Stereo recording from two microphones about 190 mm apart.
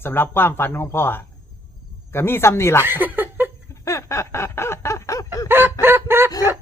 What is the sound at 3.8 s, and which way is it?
Snicker, 15° left (ahead or behind).